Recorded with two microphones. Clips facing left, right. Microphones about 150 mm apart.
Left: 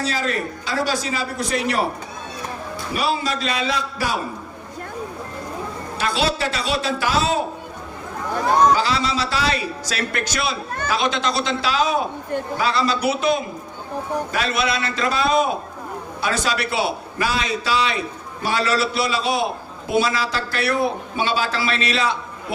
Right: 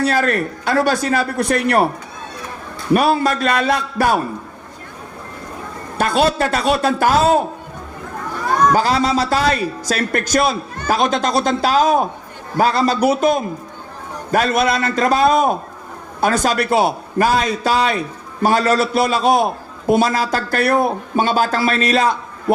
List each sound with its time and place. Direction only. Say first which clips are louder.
0.0 s a man's voice: right 6 dB; 60° right (ahead or behind)
2.9 s a man's voice: right 8 dB; 55° right (ahead or behind)
6.0 s a man's voice: right 6 dB; 50° right (ahead or behind)
8.7 s a man's voice: right 4 dB; 45° right (ahead or behind)